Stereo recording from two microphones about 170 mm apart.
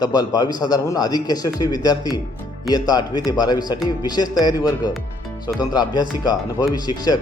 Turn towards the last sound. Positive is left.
turn(degrees=25)  # may be behind; listen again after turning